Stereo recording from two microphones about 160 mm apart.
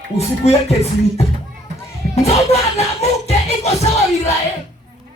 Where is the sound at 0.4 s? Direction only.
40° left (ahead or behind).